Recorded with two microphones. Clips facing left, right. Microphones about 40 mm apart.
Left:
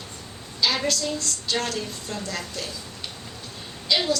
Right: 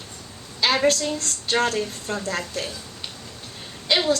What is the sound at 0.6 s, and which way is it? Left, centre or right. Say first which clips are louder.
A woman's voice: right 4 dB; right.